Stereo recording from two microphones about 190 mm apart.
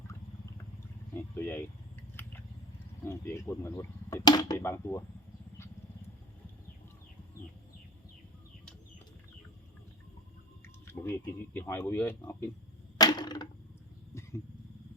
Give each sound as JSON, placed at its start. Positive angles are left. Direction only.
{"t": 1.1, "sound": "speech", "side_deg": 10}
{"t": 3.0, "sound": "speech", "side_deg": 10}
{"t": 10.9, "sound": "speech", "side_deg": 10}
{"t": 13.0, "sound": "a sound", "side_deg": 20}